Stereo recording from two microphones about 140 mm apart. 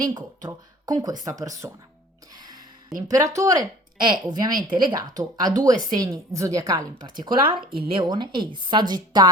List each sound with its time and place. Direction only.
0.1 s a woman's voice: 30° right (ahead or behind)
2.3 s music: 30° right (ahead or behind)
3.1 s a woman's voice: 25° right (ahead or behind)